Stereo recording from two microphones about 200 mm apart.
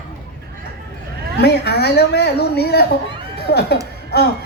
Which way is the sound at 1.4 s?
55° left (ahead or behind).